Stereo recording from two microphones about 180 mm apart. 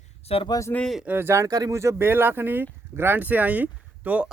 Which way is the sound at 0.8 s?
Centre (ahead or behind).